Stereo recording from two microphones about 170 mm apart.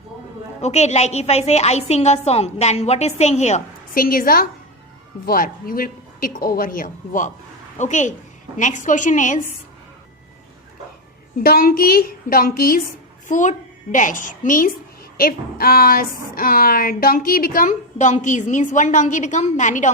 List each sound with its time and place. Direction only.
0.6 s a woman's voice: 40° left (ahead or behind)
3.9 s a woman's voice: 55° left (ahead or behind)
11.4 s a woman's voice: 60° left (ahead or behind)
13.2 s a woman's voice: 45° left (ahead or behind)